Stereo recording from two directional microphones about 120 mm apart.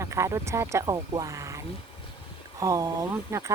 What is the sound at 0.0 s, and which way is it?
Speech, 25° right (ahead or behind).